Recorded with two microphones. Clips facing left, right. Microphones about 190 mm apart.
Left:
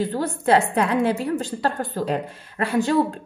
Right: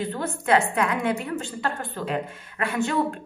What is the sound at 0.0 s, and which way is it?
A woman's voice, 35° left (ahead or behind).